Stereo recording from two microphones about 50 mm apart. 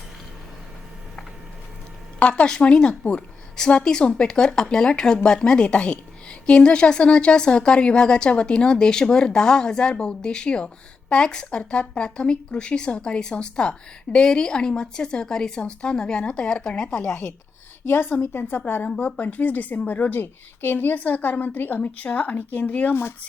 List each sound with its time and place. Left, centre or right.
2.3 s speech: centre
17.8 s a woman's voice: left